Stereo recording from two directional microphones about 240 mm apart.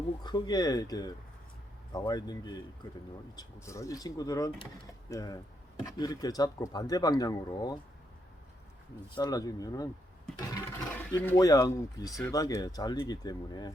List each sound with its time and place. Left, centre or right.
0.2 s speech: centre
9.1 s speech: centre